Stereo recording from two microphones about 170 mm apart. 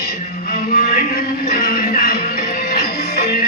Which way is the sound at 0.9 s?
55° left (ahead or behind).